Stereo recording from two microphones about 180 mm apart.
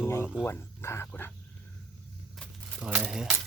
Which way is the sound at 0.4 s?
15° left (ahead or behind).